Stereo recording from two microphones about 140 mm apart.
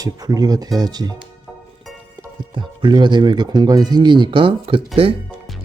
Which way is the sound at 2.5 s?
35° right (ahead or behind).